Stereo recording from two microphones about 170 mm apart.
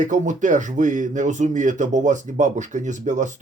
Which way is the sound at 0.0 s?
50° right (ahead or behind).